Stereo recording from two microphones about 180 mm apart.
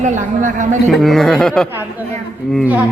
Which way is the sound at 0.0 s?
45° right (ahead or behind).